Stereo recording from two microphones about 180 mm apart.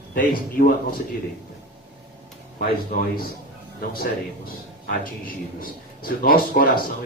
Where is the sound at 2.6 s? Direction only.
55° left (ahead or behind).